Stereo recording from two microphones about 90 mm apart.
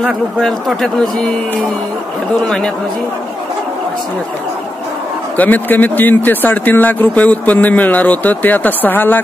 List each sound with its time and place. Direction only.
0.4 s a man's voice: 5° left (ahead or behind)
2.4 s a man's voice: 5° left (ahead or behind)
5.4 s speech: 20° left (ahead or behind)